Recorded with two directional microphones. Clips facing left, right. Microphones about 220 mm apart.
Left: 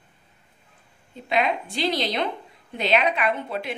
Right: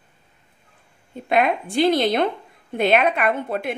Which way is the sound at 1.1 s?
50° right (ahead or behind).